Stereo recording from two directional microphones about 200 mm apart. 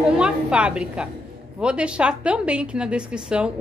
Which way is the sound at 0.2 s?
5° right (ahead or behind).